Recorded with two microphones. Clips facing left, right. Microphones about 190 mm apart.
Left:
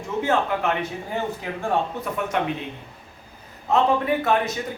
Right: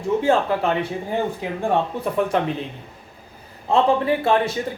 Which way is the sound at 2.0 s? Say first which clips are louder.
Right 5 dB; 30° right (ahead or behind).